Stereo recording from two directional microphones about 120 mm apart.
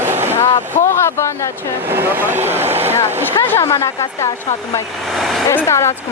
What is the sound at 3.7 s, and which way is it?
Speech, 25° left (ahead or behind).